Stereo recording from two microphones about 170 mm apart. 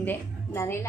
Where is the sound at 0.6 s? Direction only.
15° left (ahead or behind).